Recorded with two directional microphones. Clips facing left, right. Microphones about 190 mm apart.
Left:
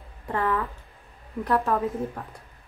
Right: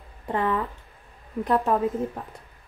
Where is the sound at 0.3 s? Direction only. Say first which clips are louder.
Right 1 dB; 20° right (ahead or behind).